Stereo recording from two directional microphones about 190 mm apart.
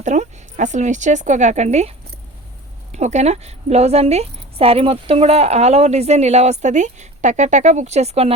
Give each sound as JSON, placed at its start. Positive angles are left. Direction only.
{"t": 0.0, "sound": "speech", "side_deg": -40}
{"t": 2.9, "sound": "speech", "side_deg": -35}